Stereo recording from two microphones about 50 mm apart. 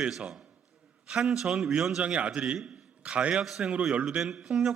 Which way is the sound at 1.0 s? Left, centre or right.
Centre.